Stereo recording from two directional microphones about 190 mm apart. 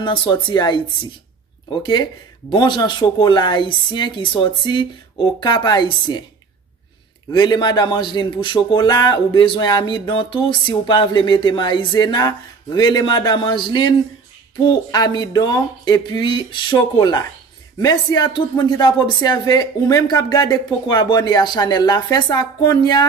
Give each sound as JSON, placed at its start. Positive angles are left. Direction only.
{"t": 0.0, "sound": "a man's voice", "side_deg": 25}
{"t": 1.8, "sound": "a man's voice", "side_deg": 25}
{"t": 7.2, "sound": "a man's voice", "side_deg": 20}